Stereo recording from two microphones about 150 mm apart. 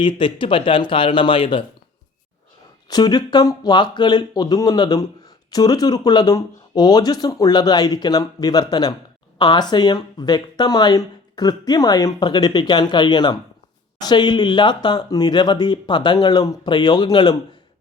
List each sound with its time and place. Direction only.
0.0 s speech: 35° left (ahead or behind)
2.9 s speech: 25° left (ahead or behind)